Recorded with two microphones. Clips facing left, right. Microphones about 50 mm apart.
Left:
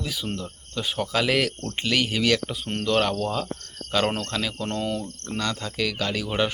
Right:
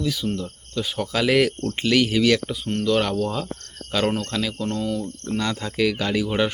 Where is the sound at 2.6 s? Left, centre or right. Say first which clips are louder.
Right 3 dB; centre.